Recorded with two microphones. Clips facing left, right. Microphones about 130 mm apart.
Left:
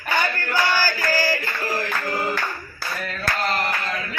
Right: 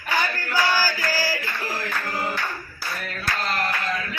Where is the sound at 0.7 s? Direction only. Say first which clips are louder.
Left 2 dB; 10° right (ahead or behind).